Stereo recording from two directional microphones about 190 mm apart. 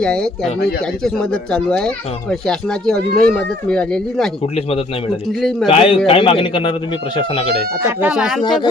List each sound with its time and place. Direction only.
0.0 s speech: 5° left (ahead or behind)
5.6 s a man's voice: 30° left (ahead or behind)
7.9 s speech: 5° right (ahead or behind)
8.4 s a man's voice: 25° left (ahead or behind)